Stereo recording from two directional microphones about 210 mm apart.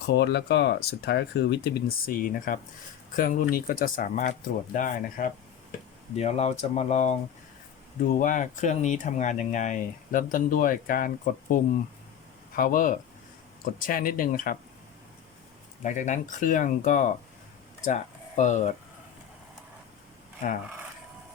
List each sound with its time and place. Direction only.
0.1 s speech: 55° left (ahead or behind)
15.8 s speech: 35° left (ahead or behind)